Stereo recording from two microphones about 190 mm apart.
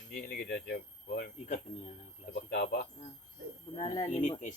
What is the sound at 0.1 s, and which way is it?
Speech, 55° left (ahead or behind).